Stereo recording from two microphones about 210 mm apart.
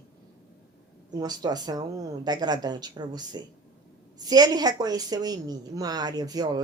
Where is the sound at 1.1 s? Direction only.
20° right (ahead or behind).